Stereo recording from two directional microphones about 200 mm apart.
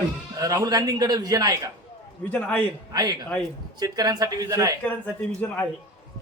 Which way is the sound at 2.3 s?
10° left (ahead or behind).